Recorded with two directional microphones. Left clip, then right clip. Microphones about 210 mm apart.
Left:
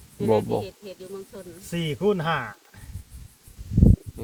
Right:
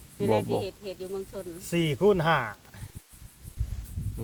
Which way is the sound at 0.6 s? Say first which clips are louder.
Right 1 dB; 55° right (ahead or behind).